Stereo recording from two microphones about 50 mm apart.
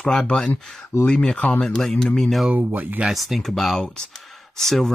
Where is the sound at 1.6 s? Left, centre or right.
Centre.